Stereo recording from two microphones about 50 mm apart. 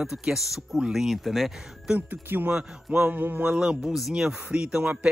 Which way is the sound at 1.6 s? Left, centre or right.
Centre.